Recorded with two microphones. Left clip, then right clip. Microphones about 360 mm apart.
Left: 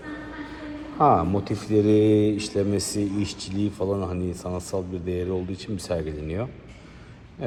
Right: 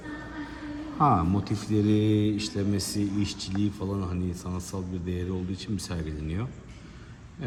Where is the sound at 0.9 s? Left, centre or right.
Centre.